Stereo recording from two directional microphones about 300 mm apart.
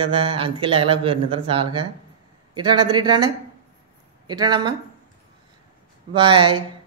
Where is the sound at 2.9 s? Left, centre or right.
Centre.